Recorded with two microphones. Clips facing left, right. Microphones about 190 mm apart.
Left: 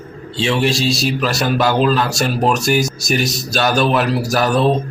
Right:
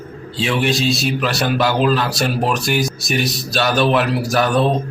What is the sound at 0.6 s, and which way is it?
Speech, centre (ahead or behind).